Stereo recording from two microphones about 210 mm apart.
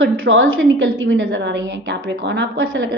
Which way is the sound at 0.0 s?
65° right (ahead or behind).